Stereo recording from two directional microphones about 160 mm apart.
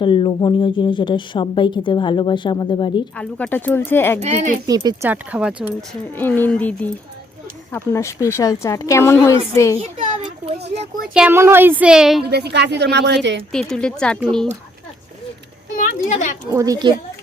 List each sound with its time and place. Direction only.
0.0 s a woman's voice: 30° left (ahead or behind)
3.2 s speech: 10° left (ahead or behind)
4.2 s speech: 45° right (ahead or behind)
4.6 s speech: 25° right (ahead or behind)
5.0 s speech: 10° right (ahead or behind)
5.9 s a woman's voice: 10° left (ahead or behind)
9.7 s a child's voice: 35° right (ahead or behind)
11.1 s a woman's voice: 5° right (ahead or behind)
12.2 s a woman's voice: 90° right
13.5 s a woman's voice: 5° left (ahead or behind)
15.8 s a child's voice: 50° left (ahead or behind)
16.5 s speech: 20° right (ahead or behind)